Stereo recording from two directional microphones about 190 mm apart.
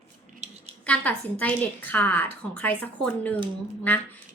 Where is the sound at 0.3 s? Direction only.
35° right (ahead or behind).